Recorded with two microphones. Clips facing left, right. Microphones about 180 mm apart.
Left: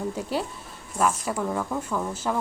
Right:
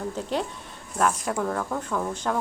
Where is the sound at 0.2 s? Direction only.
5° left (ahead or behind).